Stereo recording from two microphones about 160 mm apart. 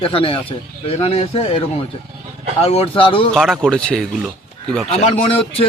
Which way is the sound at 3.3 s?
5° left (ahead or behind).